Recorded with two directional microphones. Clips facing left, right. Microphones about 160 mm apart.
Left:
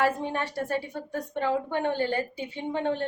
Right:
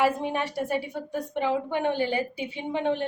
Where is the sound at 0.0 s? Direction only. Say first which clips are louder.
Right 2 dB; 15° right (ahead or behind).